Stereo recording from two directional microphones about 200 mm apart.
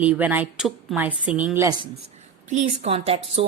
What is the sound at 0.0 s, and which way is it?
A woman's voice, 10° right (ahead or behind).